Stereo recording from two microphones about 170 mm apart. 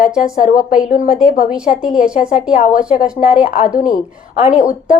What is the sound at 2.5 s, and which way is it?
A woman's voice, 55° left (ahead or behind).